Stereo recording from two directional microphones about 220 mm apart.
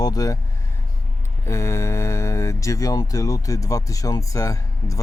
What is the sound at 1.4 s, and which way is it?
Speech, 10° left (ahead or behind).